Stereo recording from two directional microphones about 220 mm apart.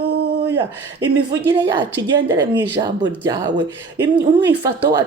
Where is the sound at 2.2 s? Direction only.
15° right (ahead or behind).